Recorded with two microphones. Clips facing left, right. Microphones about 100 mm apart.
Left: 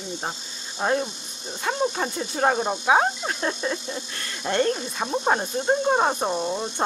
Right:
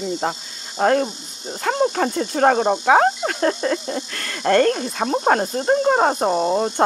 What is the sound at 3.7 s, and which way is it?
Speech, 65° right (ahead or behind).